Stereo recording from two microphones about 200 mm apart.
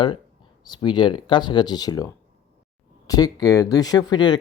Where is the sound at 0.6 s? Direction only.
20° left (ahead or behind).